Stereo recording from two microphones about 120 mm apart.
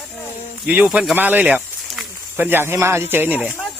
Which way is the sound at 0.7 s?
10° right (ahead or behind).